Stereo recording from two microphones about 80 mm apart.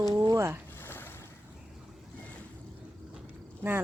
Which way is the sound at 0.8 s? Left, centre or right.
Left.